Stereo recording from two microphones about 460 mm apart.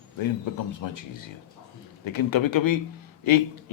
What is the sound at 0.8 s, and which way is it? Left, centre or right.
Speech, left.